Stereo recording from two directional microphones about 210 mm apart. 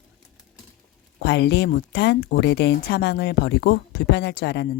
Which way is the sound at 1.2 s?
55° left (ahead or behind).